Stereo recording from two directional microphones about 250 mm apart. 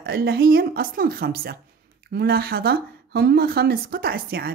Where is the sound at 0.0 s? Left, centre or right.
Right.